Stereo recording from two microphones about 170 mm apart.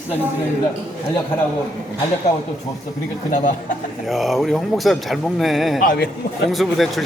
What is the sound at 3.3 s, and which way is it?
Speech, 45° left (ahead or behind).